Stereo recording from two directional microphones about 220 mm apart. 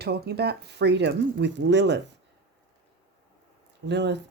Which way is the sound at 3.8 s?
50° right (ahead or behind).